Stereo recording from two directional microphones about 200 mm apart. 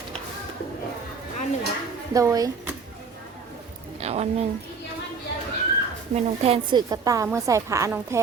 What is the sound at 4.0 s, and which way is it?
Speech, 30° right (ahead or behind).